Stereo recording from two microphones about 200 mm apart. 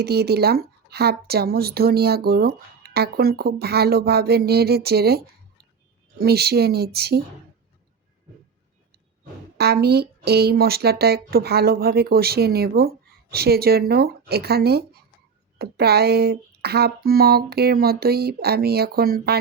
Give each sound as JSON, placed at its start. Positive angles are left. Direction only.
{"t": 0.0, "sound": "a woman's voice", "side_deg": -55}
{"t": 9.6, "sound": "a woman's voice", "side_deg": -55}